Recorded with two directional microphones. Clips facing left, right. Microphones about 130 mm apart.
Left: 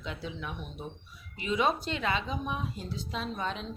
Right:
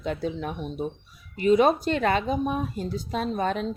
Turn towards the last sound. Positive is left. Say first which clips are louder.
# right 9 dB
turn(degrees=-50)  # may be behind; listen again after turning